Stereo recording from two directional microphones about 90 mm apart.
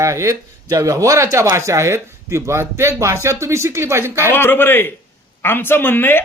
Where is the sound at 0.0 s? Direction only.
35° right (ahead or behind).